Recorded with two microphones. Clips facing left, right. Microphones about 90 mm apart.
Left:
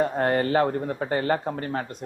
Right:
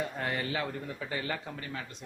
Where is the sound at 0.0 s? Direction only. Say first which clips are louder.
Left 11 dB; 45° left (ahead or behind).